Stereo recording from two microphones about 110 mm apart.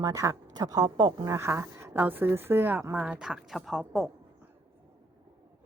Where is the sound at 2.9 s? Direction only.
10° right (ahead or behind).